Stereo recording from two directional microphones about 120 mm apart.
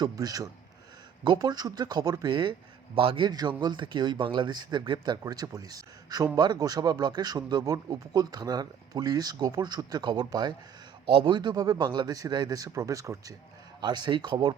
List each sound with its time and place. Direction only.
0.0 s speech: 30° right (ahead or behind); by 3.2 s 50° right (ahead or behind)
3.2 s speech: 35° right (ahead or behind)